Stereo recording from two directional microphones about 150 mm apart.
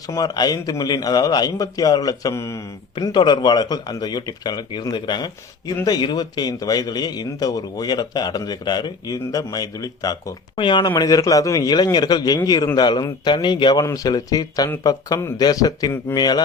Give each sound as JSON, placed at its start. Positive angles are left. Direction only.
{"t": 0.1, "sound": "a man's voice", "side_deg": 25}
{"t": 2.9, "sound": "a man's voice", "side_deg": 30}